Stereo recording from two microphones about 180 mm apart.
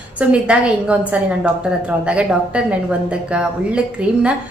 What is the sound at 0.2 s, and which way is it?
A woman's voice, 5° right (ahead or behind).